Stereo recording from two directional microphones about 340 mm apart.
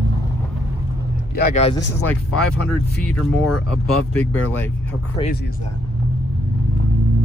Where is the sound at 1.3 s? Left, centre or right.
Left.